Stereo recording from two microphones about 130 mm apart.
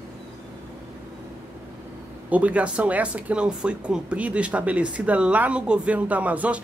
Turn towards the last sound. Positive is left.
turn(degrees=-10)  # may be behind; listen again after turning